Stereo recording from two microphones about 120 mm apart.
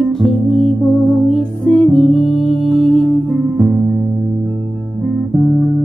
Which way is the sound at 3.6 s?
15° right (ahead or behind).